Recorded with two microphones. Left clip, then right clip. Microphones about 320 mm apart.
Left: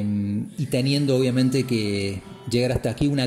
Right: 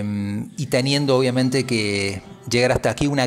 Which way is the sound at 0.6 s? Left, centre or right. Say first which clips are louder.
Right 4 dB; centre.